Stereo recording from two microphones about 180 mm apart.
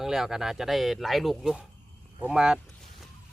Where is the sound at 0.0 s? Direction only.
Centre (ahead or behind).